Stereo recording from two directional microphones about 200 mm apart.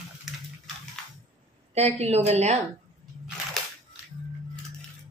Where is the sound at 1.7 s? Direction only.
30° right (ahead or behind).